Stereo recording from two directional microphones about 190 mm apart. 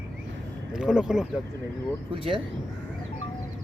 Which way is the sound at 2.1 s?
25° right (ahead or behind).